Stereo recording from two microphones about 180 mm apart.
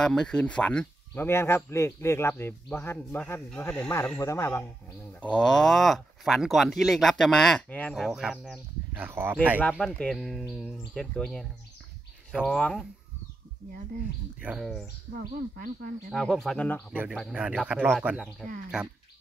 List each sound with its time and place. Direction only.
0.0 s speech: 5° left (ahead or behind)
5.2 s speech: 5° left (ahead or behind)
9.6 s speech: centre (ahead or behind)
14.4 s speech: 5° right (ahead or behind)
15.1 s speech: 55° right (ahead or behind)
16.1 s speech: 5° left (ahead or behind)
16.9 s speech: 10° right (ahead or behind)